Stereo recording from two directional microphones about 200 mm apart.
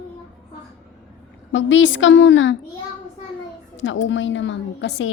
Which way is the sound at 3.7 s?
70° left (ahead or behind).